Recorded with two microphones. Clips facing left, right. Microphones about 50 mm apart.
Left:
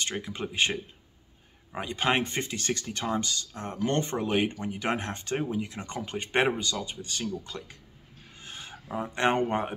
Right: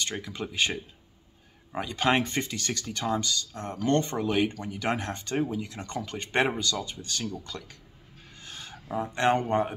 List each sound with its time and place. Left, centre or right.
0.2 s speech: left
2.2 s speech: left
8.4 s a sound: left
9.0 s speech: left